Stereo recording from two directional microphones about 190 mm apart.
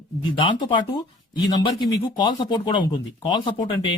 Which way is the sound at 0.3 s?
25° left (ahead or behind).